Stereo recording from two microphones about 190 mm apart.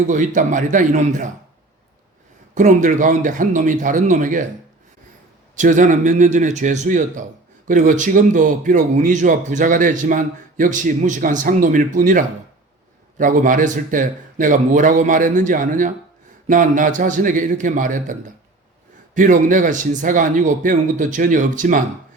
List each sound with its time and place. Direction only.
0.0 s speech: 40° right (ahead or behind)
2.6 s speech: 40° right (ahead or behind)
5.5 s a man's voice: 40° right (ahead or behind)